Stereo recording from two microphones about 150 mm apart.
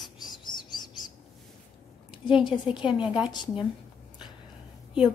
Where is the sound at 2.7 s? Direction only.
5° right (ahead or behind).